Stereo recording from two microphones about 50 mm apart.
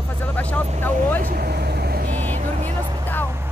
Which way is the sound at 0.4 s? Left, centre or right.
Left.